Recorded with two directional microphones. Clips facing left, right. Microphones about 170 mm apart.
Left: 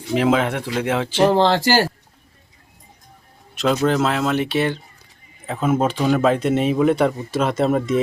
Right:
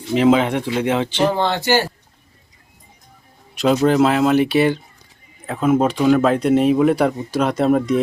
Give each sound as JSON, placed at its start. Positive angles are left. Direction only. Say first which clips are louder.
{"t": 0.1, "sound": "speech", "louder": "right 3 dB", "side_deg": 5}
{"t": 1.5, "sound": "a man's voice", "louder": "left 1 dB", "side_deg": 90}
{"t": 3.6, "sound": "speech", "louder": "right 4 dB", "side_deg": -5}